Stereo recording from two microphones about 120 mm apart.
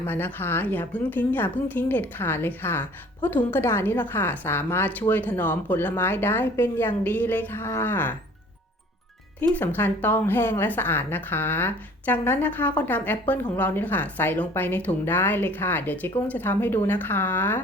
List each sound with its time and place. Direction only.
0.0 s a woman's voice: 15° left (ahead or behind)
9.4 s a woman's voice: 15° left (ahead or behind)